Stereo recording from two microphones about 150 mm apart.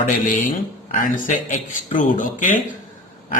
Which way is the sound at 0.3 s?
60° left (ahead or behind).